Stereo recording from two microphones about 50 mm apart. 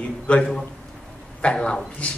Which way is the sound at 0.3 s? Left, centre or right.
Left.